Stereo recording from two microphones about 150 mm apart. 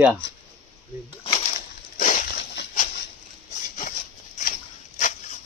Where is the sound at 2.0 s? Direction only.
55° left (ahead or behind).